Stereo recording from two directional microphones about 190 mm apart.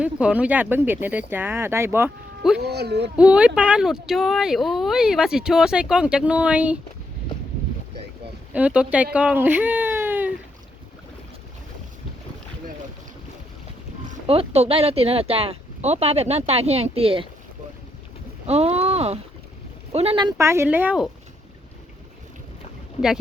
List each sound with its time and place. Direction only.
0.0 s speech: 5° right (ahead or behind)
2.6 s speech: 60° right (ahead or behind)
3.2 s speech: 5° right (ahead or behind)
8.5 s speech: 5° right (ahead or behind)
14.1 s speech: 30° right (ahead or behind)
18.4 s speech: 35° right (ahead or behind)
20.4 s speech: 15° right (ahead or behind)